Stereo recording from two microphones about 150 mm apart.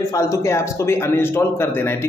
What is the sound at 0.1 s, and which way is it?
A man's voice, 20° left (ahead or behind).